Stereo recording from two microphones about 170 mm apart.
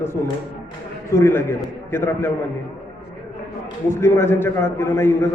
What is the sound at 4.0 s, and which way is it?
A man's voice, 15° left (ahead or behind).